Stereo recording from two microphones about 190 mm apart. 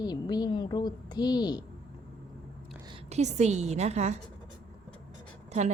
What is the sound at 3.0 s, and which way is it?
A woman's voice, 35° right (ahead or behind).